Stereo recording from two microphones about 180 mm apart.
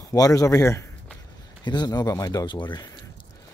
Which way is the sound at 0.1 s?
20° left (ahead or behind).